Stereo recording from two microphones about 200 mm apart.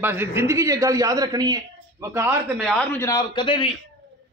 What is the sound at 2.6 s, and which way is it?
A man's voice, 5° left (ahead or behind).